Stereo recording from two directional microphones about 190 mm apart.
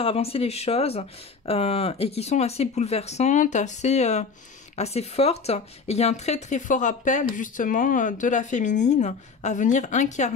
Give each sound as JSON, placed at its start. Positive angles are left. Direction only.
{"t": 0.0, "sound": "speech", "side_deg": 30}